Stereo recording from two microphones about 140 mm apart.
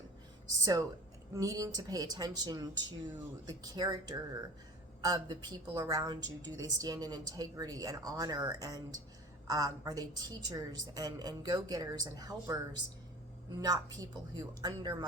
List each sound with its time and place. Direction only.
0.6 s a woman's voice: 25° right (ahead or behind)